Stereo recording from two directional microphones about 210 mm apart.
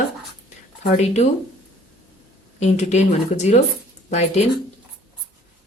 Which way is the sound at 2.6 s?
30° left (ahead or behind).